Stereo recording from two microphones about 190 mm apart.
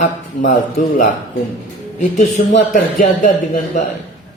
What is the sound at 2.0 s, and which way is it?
A man's voice, 40° left (ahead or behind).